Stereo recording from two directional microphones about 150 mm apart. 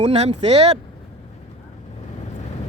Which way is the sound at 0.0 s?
45° right (ahead or behind).